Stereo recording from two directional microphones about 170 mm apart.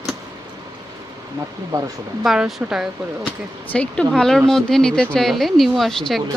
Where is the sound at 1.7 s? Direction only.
20° right (ahead or behind).